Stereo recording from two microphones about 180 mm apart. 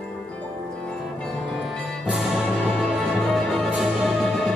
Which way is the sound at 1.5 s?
Centre (ahead or behind).